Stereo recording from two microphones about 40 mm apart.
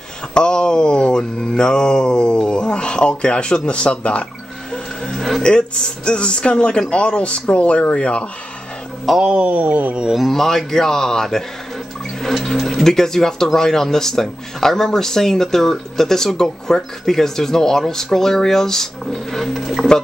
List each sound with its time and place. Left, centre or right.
0.3 s speech: left
5.4 s speech: left
9.1 s speech: centre
9.4 s a sound: right
10.1 s speech: centre
12.4 s speech: centre